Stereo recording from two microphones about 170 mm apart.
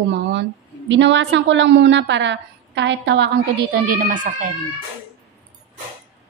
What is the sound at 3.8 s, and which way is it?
Speech, 55° right (ahead or behind).